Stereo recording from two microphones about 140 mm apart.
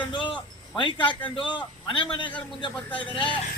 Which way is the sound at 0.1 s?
35° left (ahead or behind).